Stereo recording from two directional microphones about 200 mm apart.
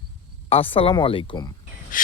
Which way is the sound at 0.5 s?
25° left (ahead or behind).